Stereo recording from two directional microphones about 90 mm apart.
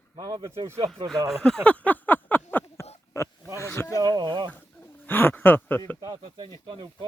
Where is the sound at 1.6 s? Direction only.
20° left (ahead or behind).